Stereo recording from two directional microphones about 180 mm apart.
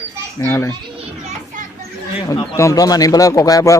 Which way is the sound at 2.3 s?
20° left (ahead or behind).